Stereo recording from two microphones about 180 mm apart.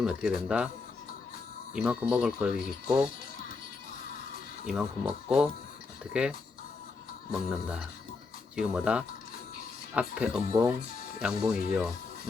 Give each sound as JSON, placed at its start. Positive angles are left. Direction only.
{"t": 0.0, "sound": "speech", "side_deg": 0}
{"t": 1.7, "sound": "speech", "side_deg": -5}
{"t": 4.6, "sound": "speech", "side_deg": -5}
{"t": 10.5, "sound": "speech", "side_deg": -20}
{"t": 11.2, "sound": "speech", "side_deg": 0}